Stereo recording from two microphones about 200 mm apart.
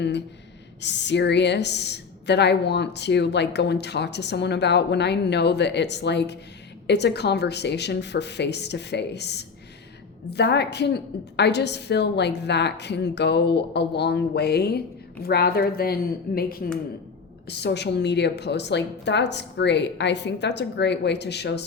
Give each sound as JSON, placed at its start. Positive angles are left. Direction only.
{"t": 0.8, "sound": "a woman's voice", "side_deg": 60}